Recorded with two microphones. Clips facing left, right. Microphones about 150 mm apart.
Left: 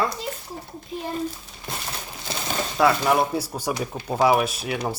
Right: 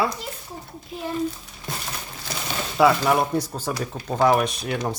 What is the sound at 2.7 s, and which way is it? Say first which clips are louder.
Speech: right 2 dB; centre (ahead or behind).